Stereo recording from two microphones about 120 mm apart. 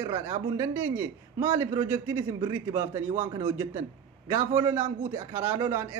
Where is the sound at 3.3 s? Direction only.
40° right (ahead or behind).